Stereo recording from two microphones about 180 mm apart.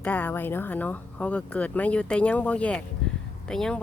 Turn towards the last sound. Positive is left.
turn(degrees=5)  # may be behind; listen again after turning